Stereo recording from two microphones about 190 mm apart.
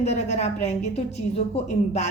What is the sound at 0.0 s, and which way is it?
Speech, 35° left (ahead or behind).